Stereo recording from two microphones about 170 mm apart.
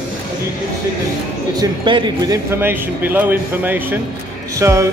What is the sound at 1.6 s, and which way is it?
Speech, 25° right (ahead or behind).